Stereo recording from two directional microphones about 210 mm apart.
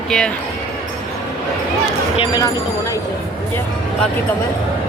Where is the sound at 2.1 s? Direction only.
20° left (ahead or behind).